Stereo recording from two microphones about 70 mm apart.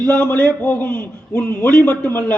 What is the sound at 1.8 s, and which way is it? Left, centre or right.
Speech, left.